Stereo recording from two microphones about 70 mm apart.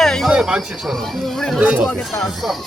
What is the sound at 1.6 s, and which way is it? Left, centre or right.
Speech, right.